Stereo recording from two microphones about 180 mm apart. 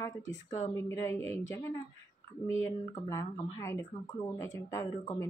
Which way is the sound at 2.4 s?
15° left (ahead or behind).